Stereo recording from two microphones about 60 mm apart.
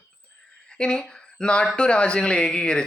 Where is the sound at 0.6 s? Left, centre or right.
Centre.